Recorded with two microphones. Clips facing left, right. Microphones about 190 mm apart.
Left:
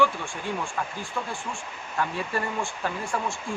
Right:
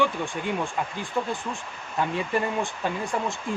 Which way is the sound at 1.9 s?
20° right (ahead or behind).